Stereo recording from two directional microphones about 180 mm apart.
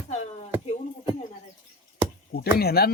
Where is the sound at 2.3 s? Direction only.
60° left (ahead or behind).